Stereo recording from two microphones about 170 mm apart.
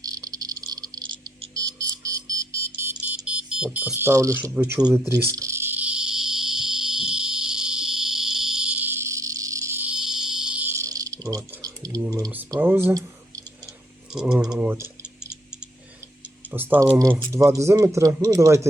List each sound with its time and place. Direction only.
0.0 s frog: 20° right (ahead or behind)
1.5 s music: 20° right (ahead or behind)
3.2 s speech: 5° right (ahead or behind)
4.9 s a sound: 15° right (ahead or behind)
12.5 s speech: 15° right (ahead or behind)
14.1 s speech: 5° right (ahead or behind)
16.5 s speech: 10° right (ahead or behind)